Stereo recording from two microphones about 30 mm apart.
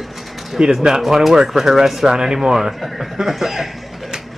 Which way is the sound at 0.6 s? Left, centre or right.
Right.